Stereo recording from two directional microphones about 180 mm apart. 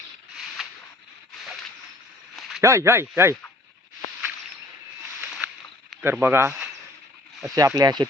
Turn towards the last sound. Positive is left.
turn(degrees=-20)  # may be behind; listen again after turning